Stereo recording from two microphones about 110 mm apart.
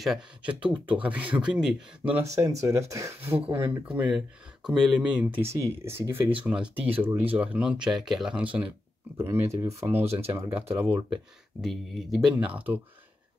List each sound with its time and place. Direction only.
0.0 s speech: 5° right (ahead or behind)
0.5 s speech: 15° right (ahead or behind)
2.2 s speech: 30° right (ahead or behind)
3.8 s speech: 10° right (ahead or behind)
9.1 s speech: 25° right (ahead or behind)
11.6 s speech: centre (ahead or behind)
12.4 s speech: 15° right (ahead or behind)